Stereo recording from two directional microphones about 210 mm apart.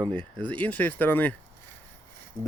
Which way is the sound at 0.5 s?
5° left (ahead or behind).